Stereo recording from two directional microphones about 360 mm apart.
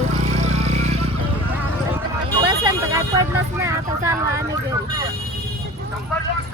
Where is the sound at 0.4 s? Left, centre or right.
Centre.